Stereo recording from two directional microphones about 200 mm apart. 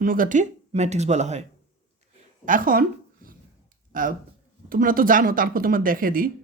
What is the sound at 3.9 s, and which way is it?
Speech, 40° right (ahead or behind).